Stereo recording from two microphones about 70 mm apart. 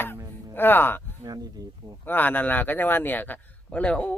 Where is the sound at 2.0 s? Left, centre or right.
Left.